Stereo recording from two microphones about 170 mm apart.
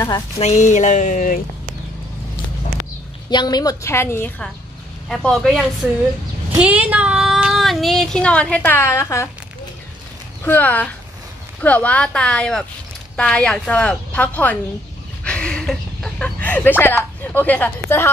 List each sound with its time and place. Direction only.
0.4 s speech: 40° left (ahead or behind)
3.3 s a woman's voice: 25° left (ahead or behind)
5.0 s speech: 5° left (ahead or behind)
6.5 s child singing: 10° right (ahead or behind); by 9.3 s 15° left (ahead or behind)
10.4 s a woman's voice: 10° left (ahead or behind)
15.2 s a sound: 5° left (ahead or behind)
17.2 s a woman's voice: 10° left (ahead or behind)